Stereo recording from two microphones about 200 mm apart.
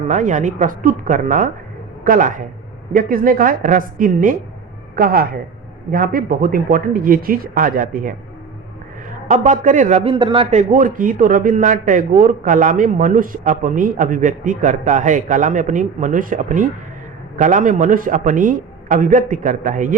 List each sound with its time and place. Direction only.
0.1 s a man's voice: 40° right (ahead or behind)
9.3 s a man's voice: 35° right (ahead or behind)